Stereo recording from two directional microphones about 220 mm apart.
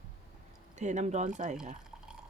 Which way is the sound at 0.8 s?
30° right (ahead or behind).